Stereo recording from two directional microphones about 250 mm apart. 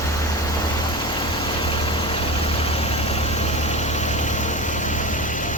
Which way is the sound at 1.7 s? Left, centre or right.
Centre.